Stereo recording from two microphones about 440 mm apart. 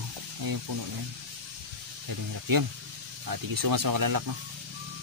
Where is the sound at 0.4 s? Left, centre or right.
Right.